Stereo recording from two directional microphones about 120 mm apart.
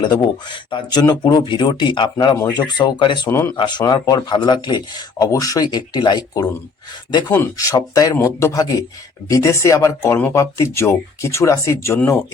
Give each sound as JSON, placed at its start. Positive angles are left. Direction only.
{"t": 0.0, "sound": "speech", "side_deg": 40}
{"t": 3.2, "sound": "speech", "side_deg": 20}
{"t": 3.6, "sound": "speech", "side_deg": 35}